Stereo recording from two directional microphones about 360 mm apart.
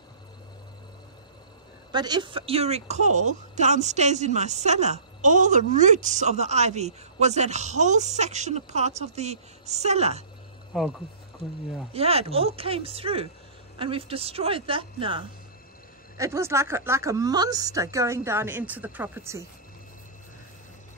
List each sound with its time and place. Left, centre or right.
1.9 s speech: centre
11.9 s speech: centre